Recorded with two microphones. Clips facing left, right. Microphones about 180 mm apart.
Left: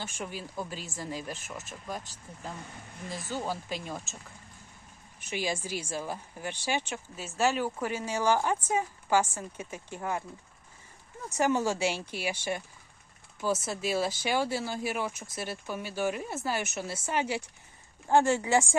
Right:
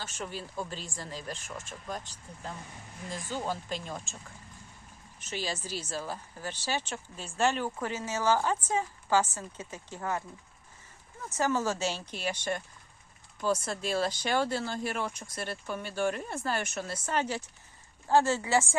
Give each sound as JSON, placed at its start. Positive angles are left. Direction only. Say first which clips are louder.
{"t": 0.2, "sound": "speech", "louder": "right 1 dB", "side_deg": 10}
{"t": 3.1, "sound": "speech", "louder": "even", "side_deg": 10}
{"t": 5.2, "sound": "speech", "louder": "left 3 dB", "side_deg": 15}
{"t": 11.3, "sound": "speech", "louder": "left 2 dB", "side_deg": 15}